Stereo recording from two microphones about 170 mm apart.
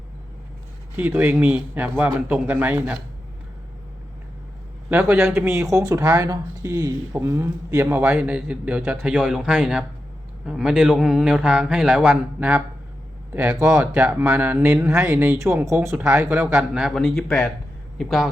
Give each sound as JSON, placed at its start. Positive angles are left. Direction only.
{"t": 0.9, "sound": "speech", "side_deg": -10}
{"t": 4.9, "sound": "speech", "side_deg": -15}